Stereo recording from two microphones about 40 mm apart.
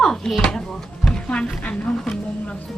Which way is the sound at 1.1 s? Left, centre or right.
Left.